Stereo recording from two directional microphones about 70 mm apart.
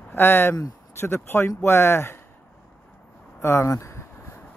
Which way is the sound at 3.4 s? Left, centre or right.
Left.